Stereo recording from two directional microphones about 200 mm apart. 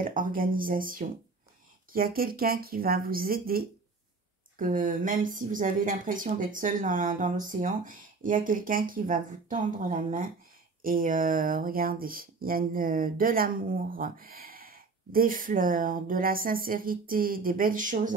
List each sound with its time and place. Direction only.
0.0 s speech: 45° right (ahead or behind)